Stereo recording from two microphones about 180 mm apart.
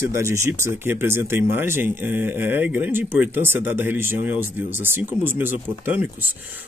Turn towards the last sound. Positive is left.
turn(degrees=-10)  # may be behind; listen again after turning